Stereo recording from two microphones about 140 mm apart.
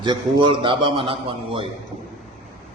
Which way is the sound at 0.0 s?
35° right (ahead or behind).